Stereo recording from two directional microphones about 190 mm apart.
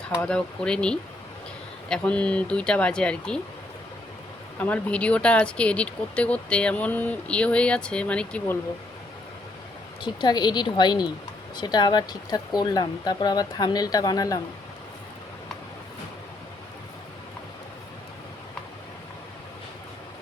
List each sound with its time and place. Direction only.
0.2 s speech: 5° left (ahead or behind)
4.6 s speech: 5° left (ahead or behind)
10.0 s speech: 25° left (ahead or behind)